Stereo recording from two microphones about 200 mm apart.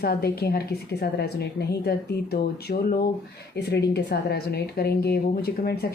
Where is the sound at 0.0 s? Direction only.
50° left (ahead or behind).